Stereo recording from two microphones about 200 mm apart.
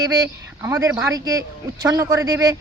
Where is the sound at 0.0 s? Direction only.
20° right (ahead or behind).